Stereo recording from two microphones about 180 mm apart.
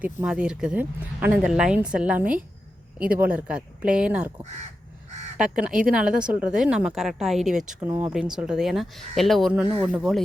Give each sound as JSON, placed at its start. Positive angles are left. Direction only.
{"t": 0.0, "sound": "speech", "side_deg": -5}
{"t": 5.4, "sound": "speech", "side_deg": -5}
{"t": 9.6, "sound": "speech", "side_deg": -30}
{"t": 9.9, "sound": "speech", "side_deg": 0}